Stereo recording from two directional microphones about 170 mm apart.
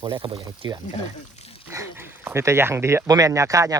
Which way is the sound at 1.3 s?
35° left (ahead or behind).